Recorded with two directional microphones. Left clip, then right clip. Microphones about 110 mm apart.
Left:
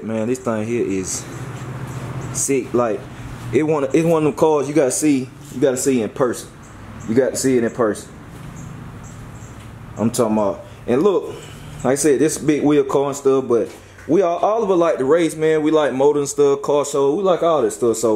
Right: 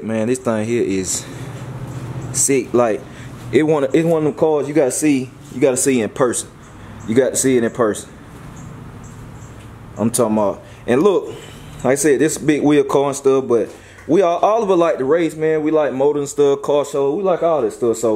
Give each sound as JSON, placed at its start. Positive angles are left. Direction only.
{"t": 0.0, "sound": "speech", "side_deg": -15}
{"t": 2.3, "sound": "speech", "side_deg": -20}
{"t": 4.0, "sound": "speech", "side_deg": 5}
{"t": 9.9, "sound": "a man's voice", "side_deg": -10}